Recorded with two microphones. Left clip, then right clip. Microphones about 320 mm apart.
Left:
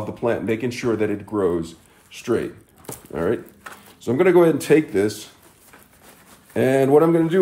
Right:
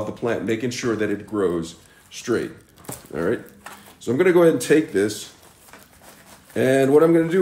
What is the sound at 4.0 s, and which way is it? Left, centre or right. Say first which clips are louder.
Speech: left 1 dB; centre.